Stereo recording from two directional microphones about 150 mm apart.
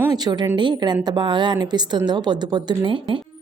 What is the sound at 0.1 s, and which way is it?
A woman's voice, 25° right (ahead or behind).